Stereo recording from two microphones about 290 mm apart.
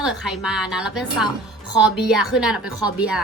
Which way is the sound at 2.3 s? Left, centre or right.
Centre.